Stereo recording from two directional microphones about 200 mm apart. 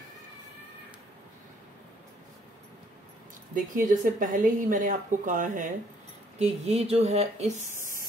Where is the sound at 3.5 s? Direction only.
40° right (ahead or behind).